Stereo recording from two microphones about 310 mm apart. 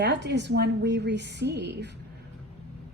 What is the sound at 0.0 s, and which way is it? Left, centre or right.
A woman's voice, right.